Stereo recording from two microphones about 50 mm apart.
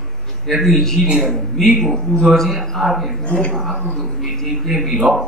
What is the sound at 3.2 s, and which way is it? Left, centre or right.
Speech, left.